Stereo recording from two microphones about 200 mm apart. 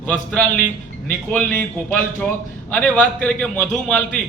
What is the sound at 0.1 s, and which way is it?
A man's voice, 5° left (ahead or behind).